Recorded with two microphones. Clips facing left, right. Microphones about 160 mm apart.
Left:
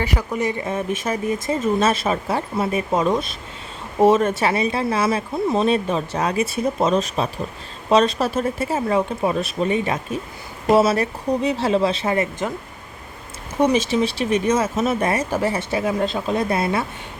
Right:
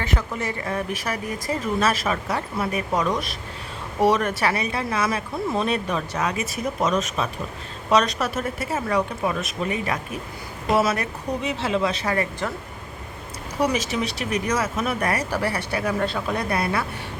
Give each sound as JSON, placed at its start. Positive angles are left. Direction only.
{"t": 0.0, "sound": "speech", "side_deg": 10}
{"t": 13.6, "sound": "speech", "side_deg": 25}